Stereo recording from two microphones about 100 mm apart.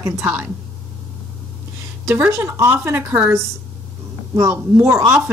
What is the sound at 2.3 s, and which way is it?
A woman's voice, 25° right (ahead or behind).